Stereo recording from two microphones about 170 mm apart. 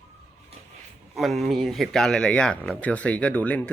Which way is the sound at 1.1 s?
Centre (ahead or behind).